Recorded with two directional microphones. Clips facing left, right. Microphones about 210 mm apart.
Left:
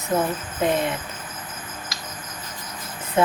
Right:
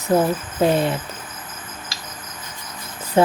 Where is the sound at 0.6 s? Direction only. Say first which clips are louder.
Right 4 dB; 35° right (ahead or behind).